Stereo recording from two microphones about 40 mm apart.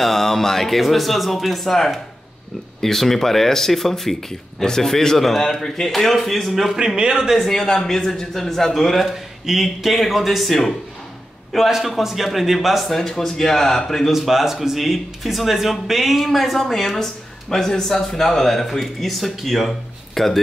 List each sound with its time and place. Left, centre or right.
0.0 s a man's voice: centre
6.6 s speech: centre
7.3 s a man's voice: centre
14.1 s a man's voice: centre